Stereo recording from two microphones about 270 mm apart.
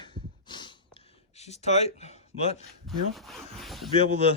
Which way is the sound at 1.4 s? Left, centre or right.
Left.